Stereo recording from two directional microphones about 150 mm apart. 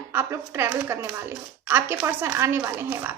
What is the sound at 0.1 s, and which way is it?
Speech, 15° right (ahead or behind).